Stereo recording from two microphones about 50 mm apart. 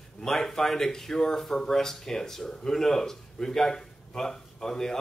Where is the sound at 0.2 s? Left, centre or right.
Centre.